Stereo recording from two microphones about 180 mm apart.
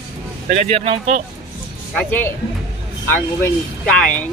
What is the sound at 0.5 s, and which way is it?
Speech, 35° right (ahead or behind).